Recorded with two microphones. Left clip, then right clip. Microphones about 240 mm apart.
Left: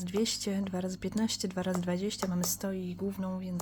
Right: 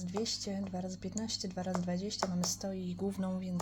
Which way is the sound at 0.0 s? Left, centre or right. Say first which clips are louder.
Left 5 dB; left.